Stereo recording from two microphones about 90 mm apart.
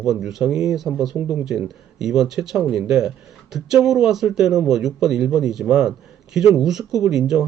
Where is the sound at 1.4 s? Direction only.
5° right (ahead or behind).